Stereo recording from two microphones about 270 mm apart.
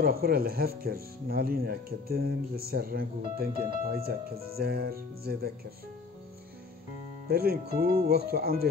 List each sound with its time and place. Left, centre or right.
0.0 s speech: right
7.2 s speech: right